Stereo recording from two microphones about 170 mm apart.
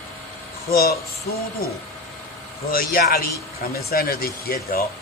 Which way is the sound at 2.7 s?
60° left (ahead or behind).